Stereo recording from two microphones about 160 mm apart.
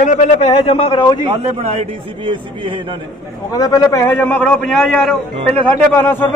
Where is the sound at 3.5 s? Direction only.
25° left (ahead or behind).